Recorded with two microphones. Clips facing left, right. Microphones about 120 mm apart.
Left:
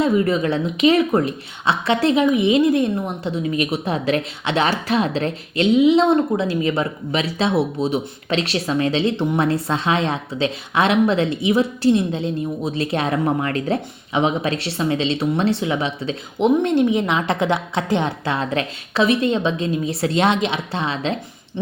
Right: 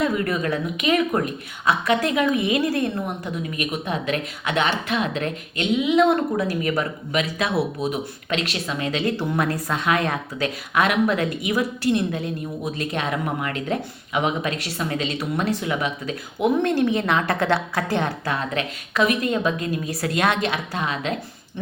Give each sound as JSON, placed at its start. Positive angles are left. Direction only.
{"t": 0.0, "sound": "speech", "side_deg": 25}
{"t": 6.1, "sound": "speech", "side_deg": 25}
{"t": 16.6, "sound": "speech", "side_deg": 20}